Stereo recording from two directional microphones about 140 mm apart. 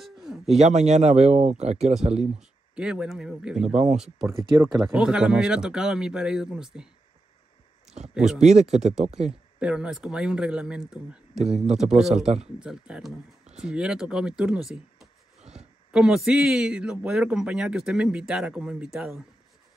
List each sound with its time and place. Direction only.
0.0 s a sound: centre (ahead or behind)
0.6 s speech: 55° right (ahead or behind)
2.7 s speech: 5° right (ahead or behind)
3.6 s speech: 55° right (ahead or behind)
3.9 s speech: 5° right (ahead or behind)
8.1 s speech: 5° right (ahead or behind)
8.4 s speech: 55° right (ahead or behind)
9.6 s speech: 5° right (ahead or behind)
11.3 s speech: 50° right (ahead or behind)
11.8 s speech: 5° right (ahead or behind)